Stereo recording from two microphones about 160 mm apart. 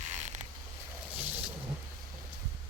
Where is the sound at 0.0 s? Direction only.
45° right (ahead or behind).